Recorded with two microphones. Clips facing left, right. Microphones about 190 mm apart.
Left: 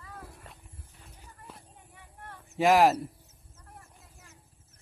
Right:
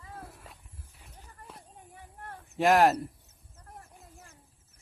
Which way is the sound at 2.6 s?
Centre (ahead or behind).